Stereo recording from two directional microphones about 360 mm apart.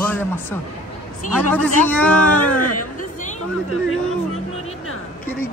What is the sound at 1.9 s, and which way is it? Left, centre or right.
Speech, centre.